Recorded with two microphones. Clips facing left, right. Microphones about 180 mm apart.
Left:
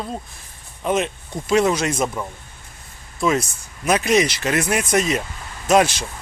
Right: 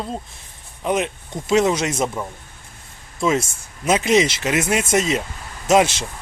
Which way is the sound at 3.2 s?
20° right (ahead or behind).